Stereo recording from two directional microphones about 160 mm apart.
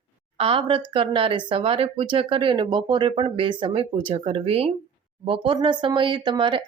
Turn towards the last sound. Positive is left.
turn(degrees=-30)  # may be behind; listen again after turning